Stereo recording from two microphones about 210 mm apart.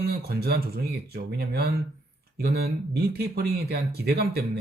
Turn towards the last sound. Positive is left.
turn(degrees=-50)  # may be behind; listen again after turning